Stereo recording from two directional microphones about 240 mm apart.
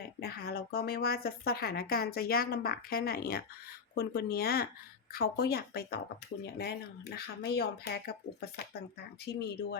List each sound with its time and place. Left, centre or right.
0.2 s speech: left